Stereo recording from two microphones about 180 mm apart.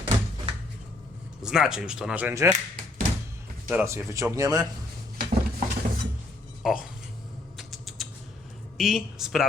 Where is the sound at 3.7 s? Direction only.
10° right (ahead or behind).